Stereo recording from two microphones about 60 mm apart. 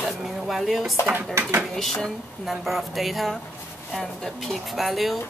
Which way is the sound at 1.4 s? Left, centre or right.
Right.